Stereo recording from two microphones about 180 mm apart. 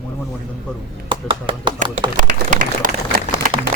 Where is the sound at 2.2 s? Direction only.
50° right (ahead or behind).